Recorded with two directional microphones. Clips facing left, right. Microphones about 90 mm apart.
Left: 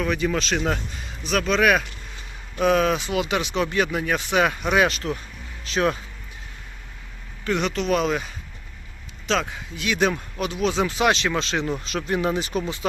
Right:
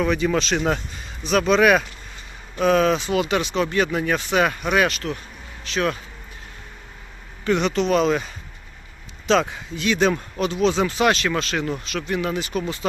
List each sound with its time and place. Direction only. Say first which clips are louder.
0.0 s speech: right 3 dB; centre (ahead or behind)
4.9 s speech: even; 35° left (ahead or behind)
7.4 s speech: right 3 dB; centre (ahead or behind); by 11.7 s 20° left (ahead or behind)
11.9 s speech: left 1 dB; 35° left (ahead or behind)
12.8 s speech: right 2 dB; 5° left (ahead or behind)